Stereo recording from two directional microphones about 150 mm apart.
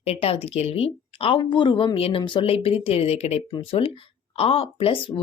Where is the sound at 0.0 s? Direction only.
40° left (ahead or behind).